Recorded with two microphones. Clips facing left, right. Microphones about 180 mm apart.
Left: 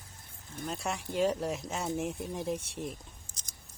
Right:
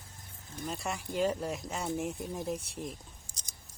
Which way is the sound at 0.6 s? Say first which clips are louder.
Left 1 dB; centre (ahead or behind).